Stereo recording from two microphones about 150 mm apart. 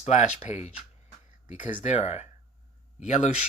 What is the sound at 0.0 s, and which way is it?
Speech, 50° left (ahead or behind).